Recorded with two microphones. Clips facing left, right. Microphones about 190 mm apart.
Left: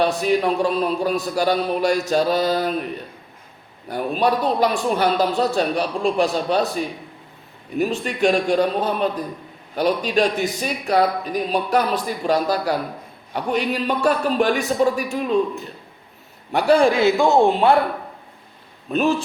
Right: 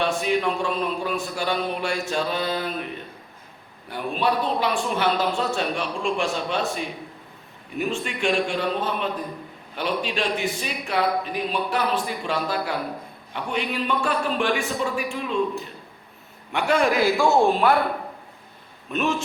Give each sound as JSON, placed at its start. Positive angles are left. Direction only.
{"t": 0.0, "sound": "speech", "side_deg": 40}
{"t": 4.2, "sound": "speech", "side_deg": 40}
{"t": 16.5, "sound": "a man's voice", "side_deg": 35}
{"t": 18.9, "sound": "speech", "side_deg": 35}